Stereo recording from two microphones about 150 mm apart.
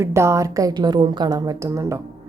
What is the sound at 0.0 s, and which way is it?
A woman's voice, 20° right (ahead or behind).